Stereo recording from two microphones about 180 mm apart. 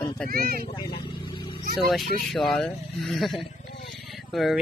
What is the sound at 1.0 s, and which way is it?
Vehicle, 25° left (ahead or behind).